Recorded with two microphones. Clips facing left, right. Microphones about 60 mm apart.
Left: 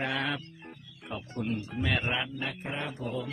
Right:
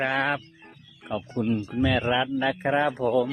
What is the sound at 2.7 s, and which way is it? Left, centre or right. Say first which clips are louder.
Speech: right 15 dB; right.